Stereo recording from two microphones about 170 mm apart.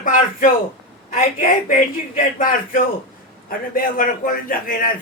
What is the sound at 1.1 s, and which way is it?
A man's voice, 55° left (ahead or behind).